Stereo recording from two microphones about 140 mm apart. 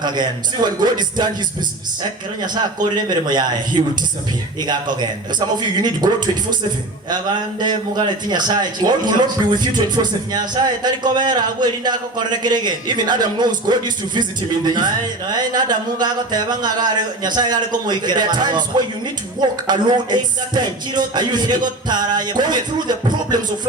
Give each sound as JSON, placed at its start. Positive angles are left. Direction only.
{"t": 0.0, "sound": "a man's voice", "side_deg": -30}
{"t": 2.6, "sound": "a man's voice", "side_deg": -30}
{"t": 7.6, "sound": "a man's voice", "side_deg": -30}